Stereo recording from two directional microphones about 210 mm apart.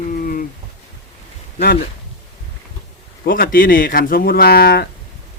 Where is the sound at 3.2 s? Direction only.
40° left (ahead or behind).